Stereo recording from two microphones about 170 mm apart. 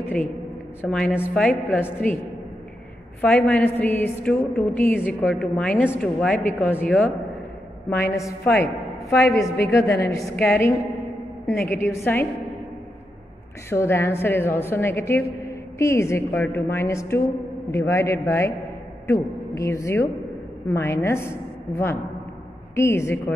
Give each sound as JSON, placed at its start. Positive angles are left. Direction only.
{"t": 0.8, "sound": "a woman's voice", "side_deg": 10}
{"t": 3.2, "sound": "a woman's voice", "side_deg": 5}
{"t": 13.7, "sound": "a woman's voice", "side_deg": 15}